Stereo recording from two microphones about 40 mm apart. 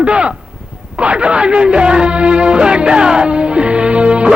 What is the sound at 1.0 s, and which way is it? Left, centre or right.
Music, right.